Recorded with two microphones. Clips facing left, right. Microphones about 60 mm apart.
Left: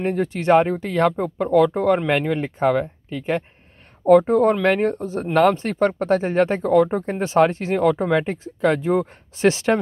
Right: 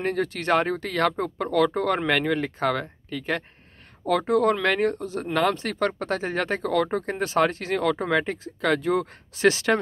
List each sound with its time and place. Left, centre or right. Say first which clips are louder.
0.0 s speech: left 4 dB; centre